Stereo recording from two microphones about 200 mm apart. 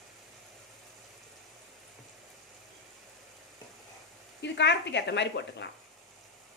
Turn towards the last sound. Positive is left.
turn(degrees=60)  # may be behind; listen again after turning